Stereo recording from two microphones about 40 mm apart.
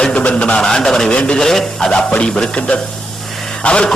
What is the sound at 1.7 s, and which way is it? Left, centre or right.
A man's voice, left.